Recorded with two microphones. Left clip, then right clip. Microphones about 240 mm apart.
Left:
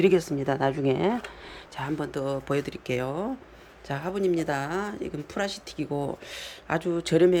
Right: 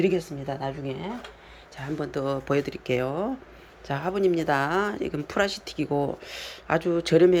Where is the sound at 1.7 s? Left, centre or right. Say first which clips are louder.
Even; centre.